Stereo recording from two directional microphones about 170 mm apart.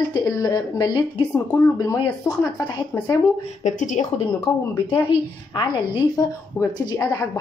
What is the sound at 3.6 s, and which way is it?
Speech, 45° left (ahead or behind).